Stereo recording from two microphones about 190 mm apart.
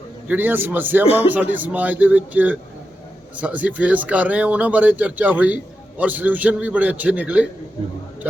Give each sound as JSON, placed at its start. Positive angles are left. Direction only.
{"t": 0.3, "sound": "speech", "side_deg": -10}
{"t": 1.0, "sound": "speech", "side_deg": 30}
{"t": 1.3, "sound": "speech", "side_deg": -10}